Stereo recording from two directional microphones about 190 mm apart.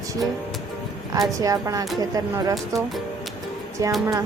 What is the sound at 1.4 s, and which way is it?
Speech, 20° right (ahead or behind).